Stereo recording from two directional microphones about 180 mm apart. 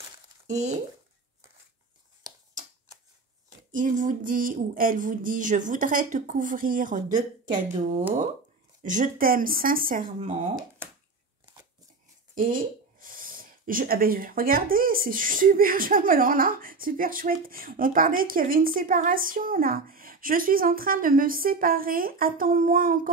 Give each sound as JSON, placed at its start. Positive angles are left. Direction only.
{"t": 0.5, "sound": "speech", "side_deg": -40}
{"t": 3.7, "sound": "speech", "side_deg": -45}
{"t": 8.8, "sound": "speech", "side_deg": -45}
{"t": 12.4, "sound": "speech", "side_deg": -50}